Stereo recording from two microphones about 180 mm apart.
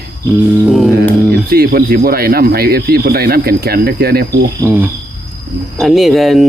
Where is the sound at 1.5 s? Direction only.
60° right (ahead or behind).